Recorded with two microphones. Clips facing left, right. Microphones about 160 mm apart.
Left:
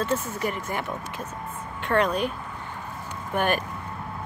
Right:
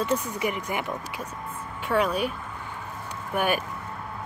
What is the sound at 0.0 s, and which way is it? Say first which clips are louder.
Speech: even; 15° right (ahead or behind).